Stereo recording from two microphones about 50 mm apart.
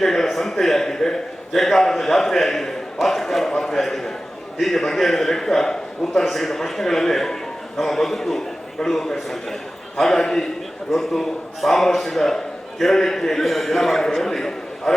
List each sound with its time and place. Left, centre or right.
0.0 s a man's voice: centre